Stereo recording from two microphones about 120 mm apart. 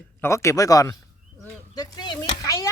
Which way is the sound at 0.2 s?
25° left (ahead or behind).